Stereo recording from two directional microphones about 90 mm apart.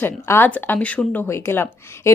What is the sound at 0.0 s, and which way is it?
A woman's voice, 25° left (ahead or behind).